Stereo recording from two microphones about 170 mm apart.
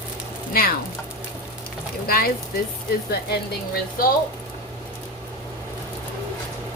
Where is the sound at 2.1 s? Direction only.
60° left (ahead or behind).